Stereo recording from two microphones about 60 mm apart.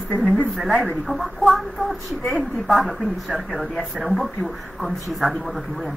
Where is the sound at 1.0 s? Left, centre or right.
Centre.